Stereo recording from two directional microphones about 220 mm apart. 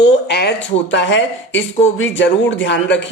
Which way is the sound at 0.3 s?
50° left (ahead or behind).